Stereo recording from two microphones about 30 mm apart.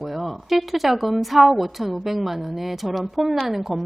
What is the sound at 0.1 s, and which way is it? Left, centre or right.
A woman's voice, centre.